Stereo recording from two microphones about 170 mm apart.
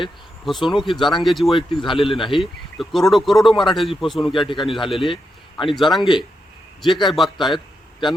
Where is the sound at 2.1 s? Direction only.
30° left (ahead or behind).